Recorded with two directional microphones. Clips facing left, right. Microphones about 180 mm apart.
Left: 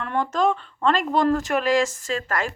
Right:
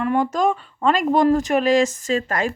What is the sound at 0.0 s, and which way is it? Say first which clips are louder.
Speech: right 3 dB; 10° right (ahead or behind).